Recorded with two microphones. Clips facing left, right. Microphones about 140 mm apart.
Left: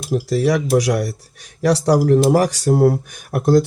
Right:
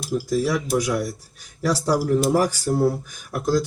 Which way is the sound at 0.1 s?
70° left (ahead or behind).